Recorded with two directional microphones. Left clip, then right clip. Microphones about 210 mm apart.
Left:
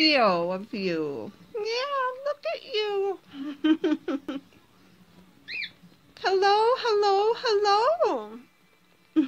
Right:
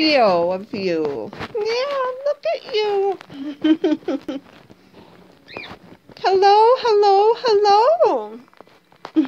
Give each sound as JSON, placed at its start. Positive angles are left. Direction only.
{"t": 0.0, "sound": "speech", "side_deg": 35}
{"t": 6.1, "sound": "speech", "side_deg": 35}